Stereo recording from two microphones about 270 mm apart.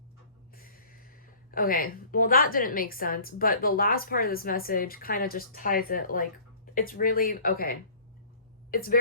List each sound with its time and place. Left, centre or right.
0.5 s a woman's voice: left